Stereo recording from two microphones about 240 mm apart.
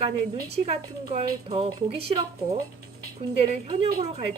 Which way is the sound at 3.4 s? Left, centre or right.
Right.